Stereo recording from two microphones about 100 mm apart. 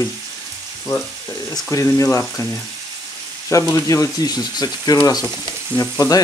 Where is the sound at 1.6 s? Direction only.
30° left (ahead or behind).